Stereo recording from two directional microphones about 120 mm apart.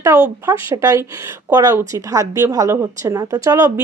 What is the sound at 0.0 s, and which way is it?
A woman's voice, 25° right (ahead or behind).